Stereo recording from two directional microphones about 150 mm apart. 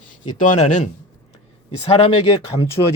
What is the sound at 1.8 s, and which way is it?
Speech, 40° left (ahead or behind).